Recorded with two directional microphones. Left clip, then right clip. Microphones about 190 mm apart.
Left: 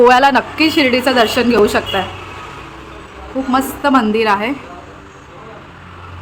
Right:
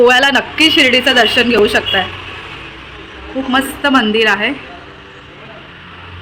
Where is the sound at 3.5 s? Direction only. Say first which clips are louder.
Right 1 dB; centre (ahead or behind).